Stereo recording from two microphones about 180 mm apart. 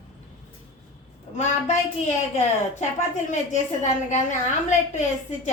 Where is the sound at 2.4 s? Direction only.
40° left (ahead or behind).